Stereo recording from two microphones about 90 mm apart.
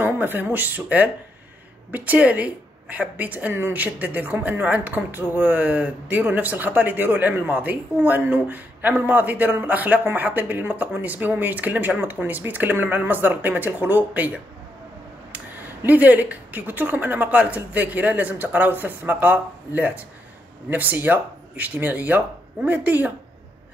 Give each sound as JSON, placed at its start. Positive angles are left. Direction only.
{"t": 0.0, "sound": "a woman's voice", "side_deg": -20}